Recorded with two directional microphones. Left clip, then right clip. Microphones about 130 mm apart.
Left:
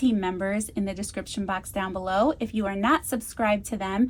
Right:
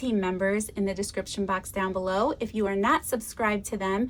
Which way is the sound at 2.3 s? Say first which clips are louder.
Even; 65° right (ahead or behind).